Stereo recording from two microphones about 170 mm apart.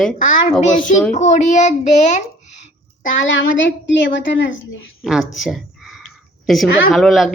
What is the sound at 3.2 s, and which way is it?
A woman's voice, 90° left.